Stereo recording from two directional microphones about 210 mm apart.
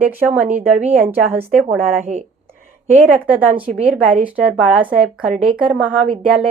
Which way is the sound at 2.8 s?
35° right (ahead or behind).